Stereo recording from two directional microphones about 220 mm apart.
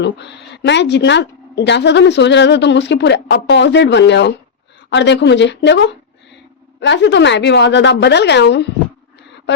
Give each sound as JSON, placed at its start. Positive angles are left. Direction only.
{"t": 0.0, "sound": "a woman's voice", "side_deg": 50}